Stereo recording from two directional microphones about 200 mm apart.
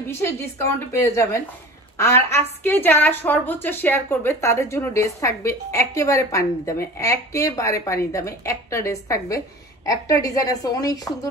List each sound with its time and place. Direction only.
0.1 s a woman's voice: 10° left (ahead or behind)